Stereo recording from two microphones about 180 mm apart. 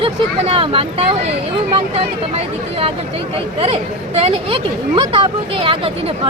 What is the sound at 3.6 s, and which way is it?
Speech, 35° right (ahead or behind).